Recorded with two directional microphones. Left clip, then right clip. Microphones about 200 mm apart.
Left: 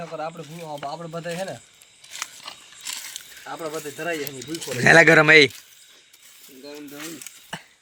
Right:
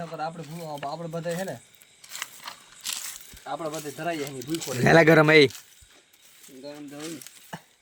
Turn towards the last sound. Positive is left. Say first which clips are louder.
# left 5 dB
turn(degrees=-5)  # may be behind; listen again after turning